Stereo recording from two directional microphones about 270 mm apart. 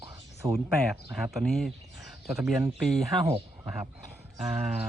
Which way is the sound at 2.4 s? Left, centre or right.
Centre.